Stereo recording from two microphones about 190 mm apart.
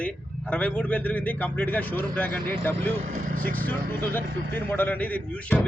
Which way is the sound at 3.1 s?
45° right (ahead or behind).